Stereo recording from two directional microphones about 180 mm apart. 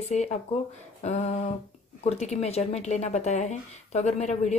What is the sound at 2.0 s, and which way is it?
Speech, 35° left (ahead or behind).